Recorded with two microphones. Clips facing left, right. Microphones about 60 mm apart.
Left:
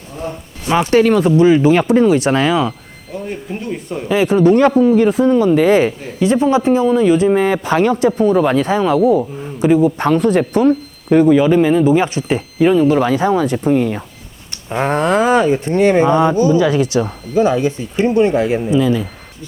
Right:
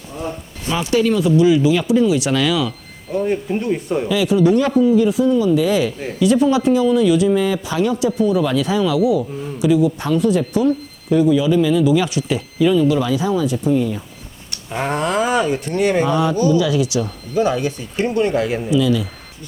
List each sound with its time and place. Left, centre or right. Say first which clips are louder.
0.7 s speech: left 5 dB; left
3.1 s speech: right 6 dB; centre
4.1 s speech: left 4 dB; left
14.7 s speech: left 5 dB; left
16.6 s speech: left 4 dB; left
17.3 s speech: left 4 dB; left
18.7 s speech: even; left